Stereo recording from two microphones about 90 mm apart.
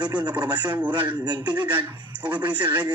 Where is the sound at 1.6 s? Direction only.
20° right (ahead or behind).